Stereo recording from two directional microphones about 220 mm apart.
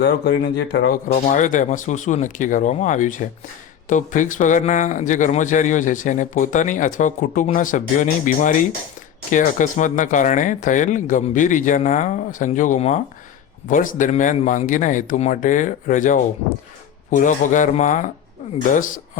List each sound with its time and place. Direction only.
0.0 s speech: 50° left (ahead or behind)